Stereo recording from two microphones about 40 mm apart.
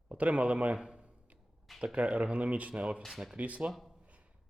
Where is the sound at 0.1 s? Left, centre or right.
Right.